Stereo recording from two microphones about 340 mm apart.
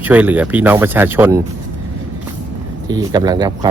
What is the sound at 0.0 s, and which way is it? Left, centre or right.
Speech, centre.